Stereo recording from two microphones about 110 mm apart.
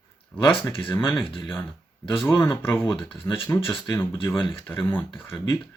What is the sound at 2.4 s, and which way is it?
Speech, 20° left (ahead or behind).